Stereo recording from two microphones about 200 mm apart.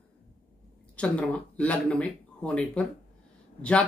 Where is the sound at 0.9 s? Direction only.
5° left (ahead or behind).